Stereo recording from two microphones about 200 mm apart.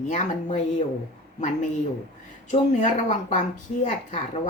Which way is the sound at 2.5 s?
35° left (ahead or behind).